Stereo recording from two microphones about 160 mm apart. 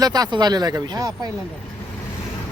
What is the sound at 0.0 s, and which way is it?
Speech, 25° right (ahead or behind).